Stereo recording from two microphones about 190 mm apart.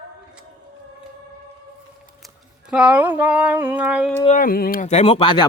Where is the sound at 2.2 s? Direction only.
5° right (ahead or behind).